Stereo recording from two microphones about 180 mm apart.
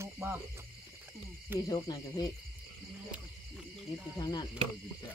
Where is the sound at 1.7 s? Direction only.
20° left (ahead or behind).